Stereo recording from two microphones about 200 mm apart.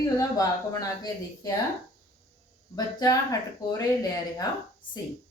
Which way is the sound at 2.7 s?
15° left (ahead or behind).